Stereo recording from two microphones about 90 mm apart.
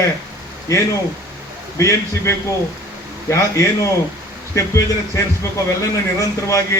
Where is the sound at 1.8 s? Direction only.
30° left (ahead or behind).